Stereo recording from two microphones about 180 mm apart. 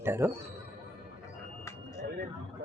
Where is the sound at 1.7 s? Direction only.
15° left (ahead or behind).